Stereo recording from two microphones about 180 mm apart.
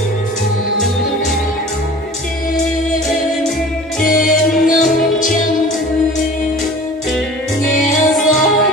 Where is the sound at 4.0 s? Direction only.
50° left (ahead or behind).